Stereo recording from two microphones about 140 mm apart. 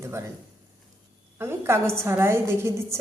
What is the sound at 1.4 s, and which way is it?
Speech, 15° right (ahead or behind).